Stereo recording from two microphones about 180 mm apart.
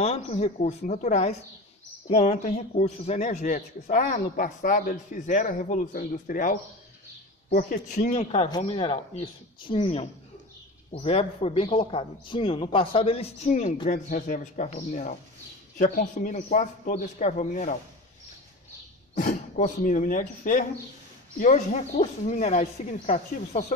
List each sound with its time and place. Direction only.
0.0 s a man's voice: 35° left (ahead or behind)
8.5 s a man's voice: 25° left (ahead or behind)
19.1 s a man's voice: 45° left (ahead or behind)